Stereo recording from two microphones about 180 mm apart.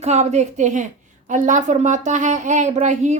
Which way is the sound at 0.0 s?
40° right (ahead or behind).